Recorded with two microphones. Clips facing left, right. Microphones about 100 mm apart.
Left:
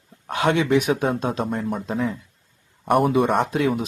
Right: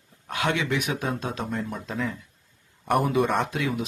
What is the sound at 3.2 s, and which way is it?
Speech, 45° left (ahead or behind).